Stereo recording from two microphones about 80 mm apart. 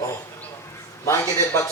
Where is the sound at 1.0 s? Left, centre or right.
Left.